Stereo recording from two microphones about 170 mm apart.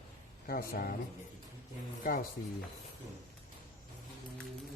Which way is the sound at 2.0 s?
55° left (ahead or behind).